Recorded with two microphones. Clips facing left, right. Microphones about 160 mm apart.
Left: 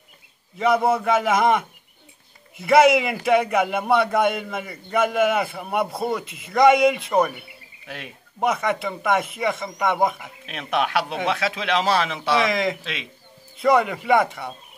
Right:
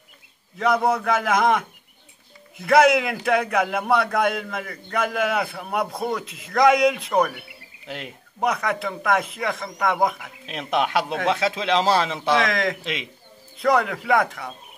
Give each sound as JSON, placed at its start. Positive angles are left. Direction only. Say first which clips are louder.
{"t": 0.6, "sound": "a man's voice", "louder": "left 1 dB", "side_deg": 5}
{"t": 10.4, "sound": "a man's voice", "louder": "right 1 dB", "side_deg": -20}
{"t": 12.4, "sound": "a man's voice", "louder": "left 1 dB", "side_deg": 0}